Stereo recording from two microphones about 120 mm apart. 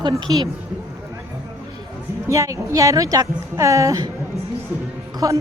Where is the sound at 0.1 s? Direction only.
30° right (ahead or behind).